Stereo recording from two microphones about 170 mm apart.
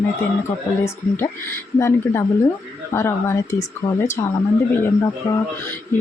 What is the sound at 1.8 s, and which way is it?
Speech, 15° left (ahead or behind).